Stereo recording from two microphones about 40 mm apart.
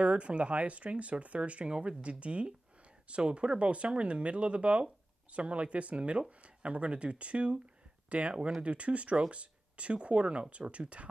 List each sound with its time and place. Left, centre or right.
0.0 s speech: right